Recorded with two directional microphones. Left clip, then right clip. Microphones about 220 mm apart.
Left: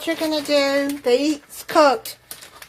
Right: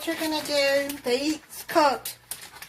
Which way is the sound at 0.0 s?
45° left (ahead or behind).